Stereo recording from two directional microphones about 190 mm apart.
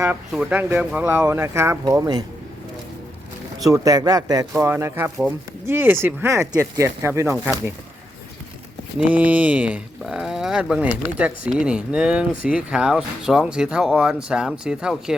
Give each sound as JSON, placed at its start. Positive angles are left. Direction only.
{"t": 0.0, "sound": "speech", "side_deg": -10}
{"t": 3.6, "sound": "speech", "side_deg": -20}
{"t": 9.0, "sound": "speech", "side_deg": -10}